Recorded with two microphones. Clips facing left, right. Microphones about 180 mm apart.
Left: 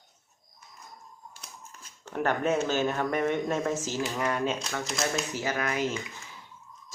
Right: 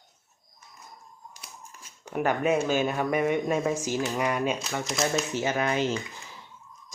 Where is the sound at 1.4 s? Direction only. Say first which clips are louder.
Right 1 dB; 10° right (ahead or behind).